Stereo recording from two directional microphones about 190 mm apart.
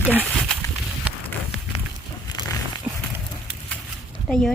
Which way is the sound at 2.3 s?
20° left (ahead or behind).